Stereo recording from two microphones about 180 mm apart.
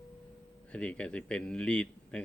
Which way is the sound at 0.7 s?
5° left (ahead or behind).